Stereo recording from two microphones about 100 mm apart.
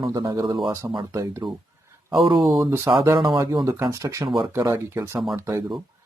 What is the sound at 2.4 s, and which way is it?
Speech, centre (ahead or behind).